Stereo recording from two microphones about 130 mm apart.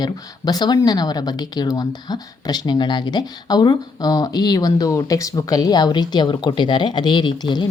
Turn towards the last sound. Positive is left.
turn(degrees=35)  # may be behind; listen again after turning